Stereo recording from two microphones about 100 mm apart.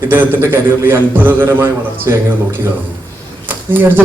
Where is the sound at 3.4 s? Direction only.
20° right (ahead or behind).